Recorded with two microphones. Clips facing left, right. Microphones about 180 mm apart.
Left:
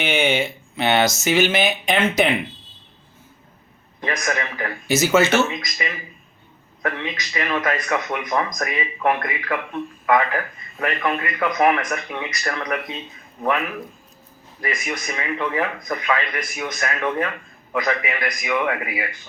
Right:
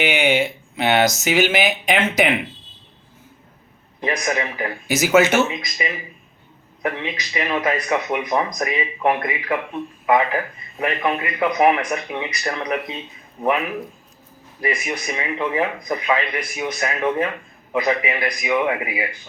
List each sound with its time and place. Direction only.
0.1 s speech: 15° right (ahead or behind)
4.2 s speech: 20° right (ahead or behind)
14.8 s speech: 15° right (ahead or behind)